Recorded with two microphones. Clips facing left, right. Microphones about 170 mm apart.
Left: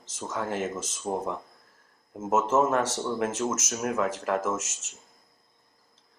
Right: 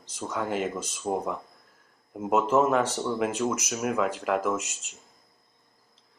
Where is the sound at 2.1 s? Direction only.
Centre (ahead or behind).